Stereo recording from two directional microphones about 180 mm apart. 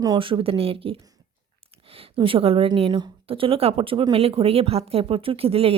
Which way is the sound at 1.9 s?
30° right (ahead or behind).